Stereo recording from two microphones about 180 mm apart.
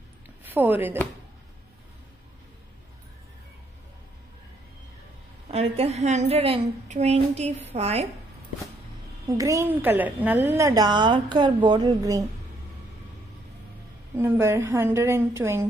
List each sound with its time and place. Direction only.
0.4 s a woman's voice: 10° right (ahead or behind)
5.5 s a woman's voice: 35° right (ahead or behind)
9.4 s a woman's voice: 15° right (ahead or behind)
14.1 s a woman's voice: 15° right (ahead or behind)